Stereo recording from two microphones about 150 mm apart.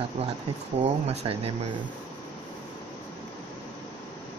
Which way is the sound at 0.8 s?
45° right (ahead or behind).